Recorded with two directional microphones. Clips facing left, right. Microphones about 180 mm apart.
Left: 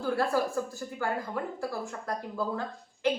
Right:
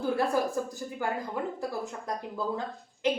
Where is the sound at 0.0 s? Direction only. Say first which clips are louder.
Right 1 dB; 15° right (ahead or behind).